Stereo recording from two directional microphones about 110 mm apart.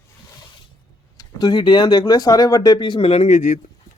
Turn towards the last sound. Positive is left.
turn(degrees=90)